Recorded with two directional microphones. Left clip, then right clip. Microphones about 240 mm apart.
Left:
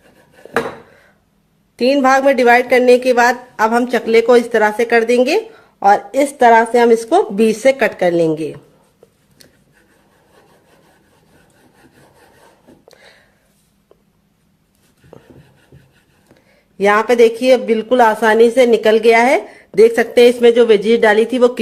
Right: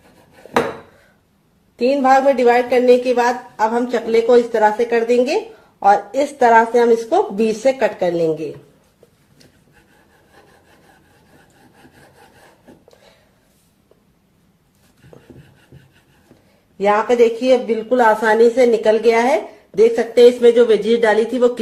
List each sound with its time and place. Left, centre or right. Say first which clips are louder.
1.8 s speech: left 1 dB; left
15.1 s a sound: left 4 dB; left
16.7 s speech: left 3 dB; left